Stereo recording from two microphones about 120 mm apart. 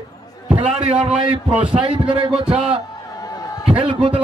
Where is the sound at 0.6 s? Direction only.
10° right (ahead or behind).